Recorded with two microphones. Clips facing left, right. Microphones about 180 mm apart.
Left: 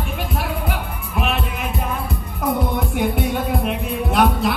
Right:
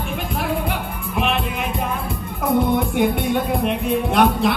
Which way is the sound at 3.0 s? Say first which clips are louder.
Right 2 dB; centre (ahead or behind).